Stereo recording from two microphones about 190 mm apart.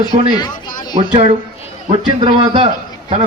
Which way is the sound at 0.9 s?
30° right (ahead or behind).